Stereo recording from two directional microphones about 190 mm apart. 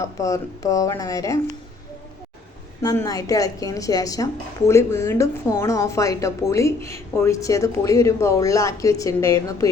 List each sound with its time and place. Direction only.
0.0 s a woman's voice: 15° left (ahead or behind)
2.8 s a woman's voice: 15° left (ahead or behind)